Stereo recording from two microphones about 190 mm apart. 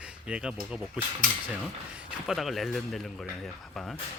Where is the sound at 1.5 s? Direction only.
5° right (ahead or behind).